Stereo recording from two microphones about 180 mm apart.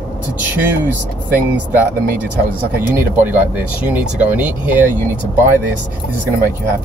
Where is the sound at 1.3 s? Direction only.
10° right (ahead or behind).